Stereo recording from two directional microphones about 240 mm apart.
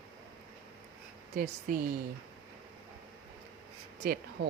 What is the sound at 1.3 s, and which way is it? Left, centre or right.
Speech, right.